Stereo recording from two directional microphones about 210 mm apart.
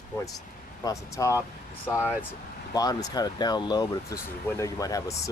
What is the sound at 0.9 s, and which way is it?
Speech, 15° left (ahead or behind).